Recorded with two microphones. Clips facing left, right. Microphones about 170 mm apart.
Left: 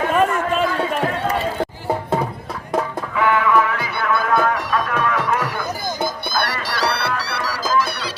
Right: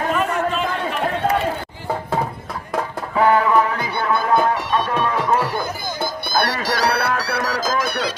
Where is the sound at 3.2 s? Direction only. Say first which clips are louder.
Right 2 dB; 35° right (ahead or behind).